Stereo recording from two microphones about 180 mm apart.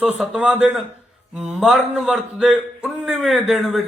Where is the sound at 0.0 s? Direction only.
Centre (ahead or behind).